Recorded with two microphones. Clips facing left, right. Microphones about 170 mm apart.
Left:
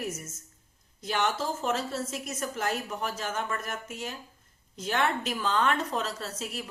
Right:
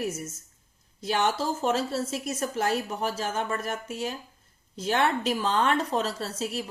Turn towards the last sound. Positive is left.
turn(degrees=-30)  # may be behind; listen again after turning